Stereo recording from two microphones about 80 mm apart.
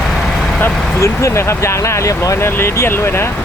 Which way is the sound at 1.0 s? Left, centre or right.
Left.